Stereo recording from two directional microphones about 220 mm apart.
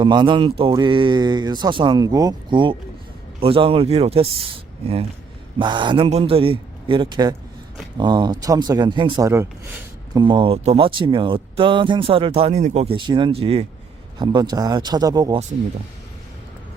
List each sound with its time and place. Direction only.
0.0 s speech: 20° right (ahead or behind)
5.5 s speech: 20° right (ahead or behind)